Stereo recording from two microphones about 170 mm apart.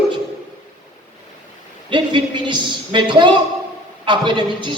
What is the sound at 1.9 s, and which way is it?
A man's voice, 30° right (ahead or behind).